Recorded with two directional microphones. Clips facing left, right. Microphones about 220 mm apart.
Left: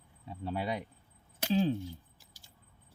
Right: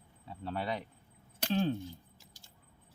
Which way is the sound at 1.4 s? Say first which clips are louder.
Left 2 dB; 5° left (ahead or behind).